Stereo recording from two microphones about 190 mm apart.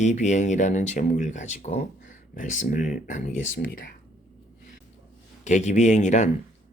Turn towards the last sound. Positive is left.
turn(degrees=40)  # may be behind; listen again after turning